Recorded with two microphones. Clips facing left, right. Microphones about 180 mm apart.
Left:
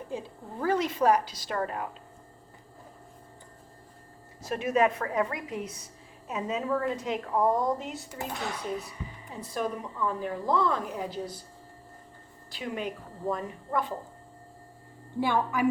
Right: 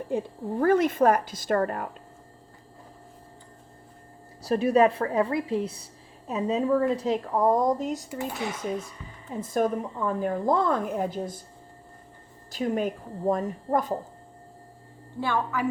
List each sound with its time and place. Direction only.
0.1 s a woman's voice: 55° right (ahead or behind)
4.4 s a woman's voice: 35° right (ahead or behind)
9.4 s a woman's voice: 50° right (ahead or behind)
12.5 s a woman's voice: 45° right (ahead or behind)
15.2 s a woman's voice: 15° left (ahead or behind)